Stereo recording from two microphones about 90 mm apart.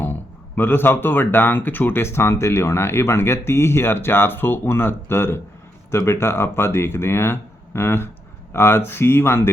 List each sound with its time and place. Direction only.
0.0 s speech: 25° left (ahead or behind)